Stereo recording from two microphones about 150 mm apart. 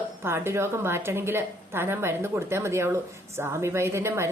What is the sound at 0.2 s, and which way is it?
A woman's voice, 15° right (ahead or behind).